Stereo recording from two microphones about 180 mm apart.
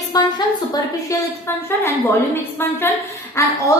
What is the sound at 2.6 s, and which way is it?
Speech, 10° left (ahead or behind).